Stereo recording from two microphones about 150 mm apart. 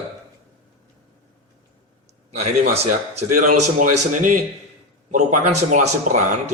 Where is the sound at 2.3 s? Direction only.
45° right (ahead or behind).